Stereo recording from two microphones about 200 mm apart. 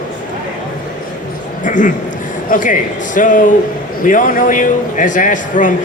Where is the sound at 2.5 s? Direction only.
40° left (ahead or behind).